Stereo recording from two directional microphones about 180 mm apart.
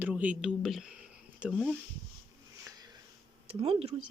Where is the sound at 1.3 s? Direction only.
5° right (ahead or behind).